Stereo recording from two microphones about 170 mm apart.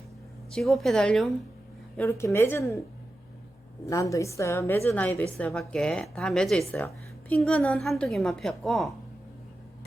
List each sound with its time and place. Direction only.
0.5 s speech: centre (ahead or behind)
2.0 s a woman's voice: 15° left (ahead or behind)
3.8 s a woman's voice: 20° left (ahead or behind); by 8.9 s centre (ahead or behind)